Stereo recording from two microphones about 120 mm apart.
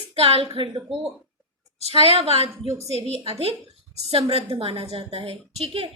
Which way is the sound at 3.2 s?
55° right (ahead or behind).